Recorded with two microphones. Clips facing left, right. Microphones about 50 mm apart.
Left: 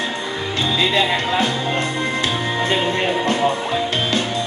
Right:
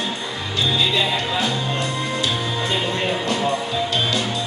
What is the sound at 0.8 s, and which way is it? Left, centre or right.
Speech, left.